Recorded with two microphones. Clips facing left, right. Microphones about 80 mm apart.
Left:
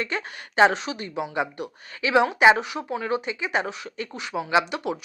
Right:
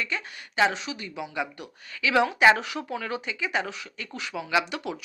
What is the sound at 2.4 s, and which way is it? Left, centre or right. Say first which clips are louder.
Speech: left 2 dB; centre.